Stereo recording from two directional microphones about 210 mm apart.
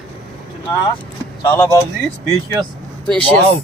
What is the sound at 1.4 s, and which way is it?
Speech, 15° left (ahead or behind).